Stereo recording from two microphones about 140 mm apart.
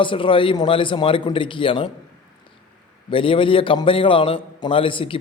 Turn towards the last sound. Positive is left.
turn(degrees=40)  # may be behind; listen again after turning